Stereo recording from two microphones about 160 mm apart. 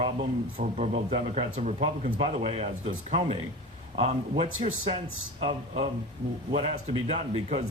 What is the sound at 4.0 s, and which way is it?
Speech, 40° right (ahead or behind).